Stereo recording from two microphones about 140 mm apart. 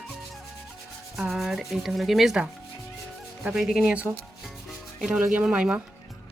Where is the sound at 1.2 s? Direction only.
Centre (ahead or behind).